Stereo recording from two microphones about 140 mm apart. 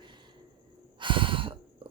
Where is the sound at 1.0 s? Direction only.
35° right (ahead or behind).